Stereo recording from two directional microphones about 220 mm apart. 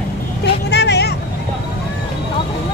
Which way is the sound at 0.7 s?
50° left (ahead or behind).